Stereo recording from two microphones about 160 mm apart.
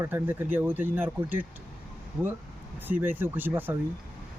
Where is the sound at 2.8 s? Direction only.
10° right (ahead or behind).